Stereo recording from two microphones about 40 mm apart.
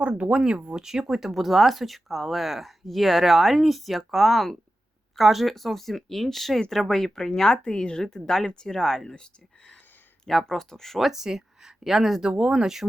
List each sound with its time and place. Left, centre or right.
0.3 s speech: right
0.8 s speech: centre
9.0 s speech: left; by 11.1 s centre
11.1 s speech: centre